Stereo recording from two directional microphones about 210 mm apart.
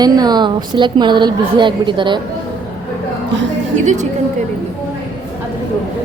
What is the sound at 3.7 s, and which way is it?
Speech, 35° right (ahead or behind).